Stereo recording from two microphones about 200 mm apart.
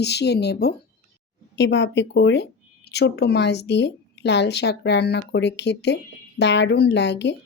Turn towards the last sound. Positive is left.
turn(degrees=60)  # may be behind; listen again after turning